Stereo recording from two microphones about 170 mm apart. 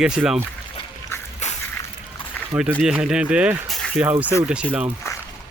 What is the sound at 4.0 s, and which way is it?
Speech, 10° right (ahead or behind).